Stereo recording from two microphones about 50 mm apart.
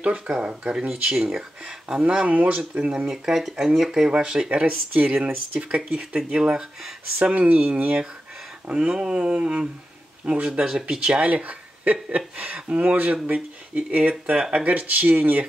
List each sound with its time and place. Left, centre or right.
0.0 s speech: right
2.2 s speech: right
3.1 s speech: centre
4.1 s speech: centre
6.5 s speech: centre
7.3 s speech: right
8.6 s speech: right